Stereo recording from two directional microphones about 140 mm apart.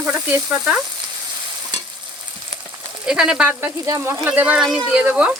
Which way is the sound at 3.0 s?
5° right (ahead or behind).